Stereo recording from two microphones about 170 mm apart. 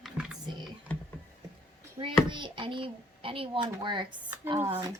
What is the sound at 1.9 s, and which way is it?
A child's voice, 30° right (ahead or behind).